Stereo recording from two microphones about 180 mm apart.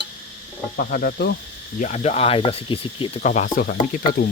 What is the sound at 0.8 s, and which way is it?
Cricket, 55° left (ahead or behind).